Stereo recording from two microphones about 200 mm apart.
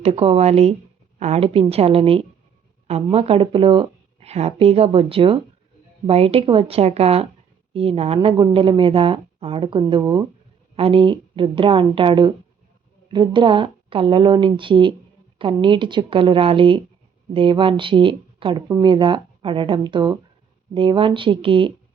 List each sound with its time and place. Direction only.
0.0 s speech: 30° right (ahead or behind)